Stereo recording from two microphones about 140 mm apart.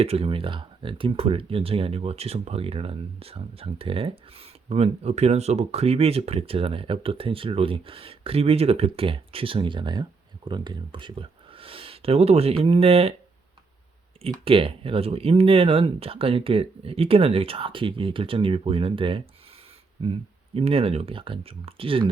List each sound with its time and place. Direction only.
0.0 s speech: 45° right (ahead or behind)
14.3 s speech: 40° right (ahead or behind)